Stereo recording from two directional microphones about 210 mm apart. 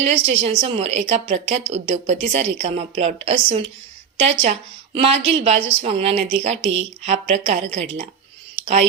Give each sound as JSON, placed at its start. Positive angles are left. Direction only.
{"t": 0.0, "sound": "a woman's voice", "side_deg": -30}
{"t": 4.9, "sound": "a woman's voice", "side_deg": -30}